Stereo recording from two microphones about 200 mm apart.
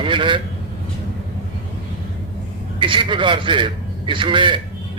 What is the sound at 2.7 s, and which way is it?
A man's voice, 25° right (ahead or behind).